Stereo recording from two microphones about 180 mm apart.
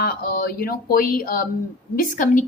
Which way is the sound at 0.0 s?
55° left (ahead or behind).